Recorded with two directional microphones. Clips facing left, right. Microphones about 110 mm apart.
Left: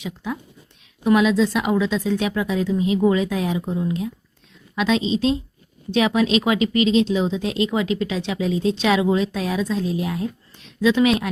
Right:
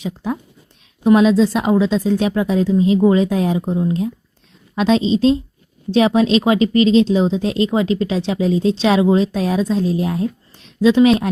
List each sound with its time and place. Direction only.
0.0 s speech: 40° right (ahead or behind)